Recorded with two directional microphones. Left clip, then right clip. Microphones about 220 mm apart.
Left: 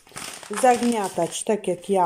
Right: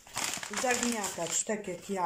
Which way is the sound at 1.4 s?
45° left (ahead or behind).